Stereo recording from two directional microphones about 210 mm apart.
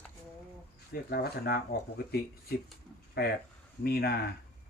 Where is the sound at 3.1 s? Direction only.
50° left (ahead or behind).